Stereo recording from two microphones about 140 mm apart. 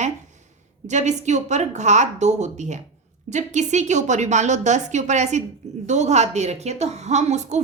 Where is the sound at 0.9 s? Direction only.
55° right (ahead or behind).